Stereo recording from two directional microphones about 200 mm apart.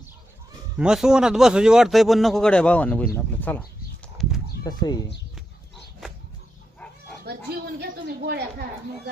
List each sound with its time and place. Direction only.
0.8 s a man's voice: 5° right (ahead or behind)
4.0 s a sound: centre (ahead or behind)
4.6 s speech: 20° left (ahead or behind)
6.7 s livestock: 5° left (ahead or behind)
7.3 s a woman's voice: 55° right (ahead or behind)